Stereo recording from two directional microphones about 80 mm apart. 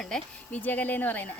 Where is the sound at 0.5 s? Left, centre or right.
Left.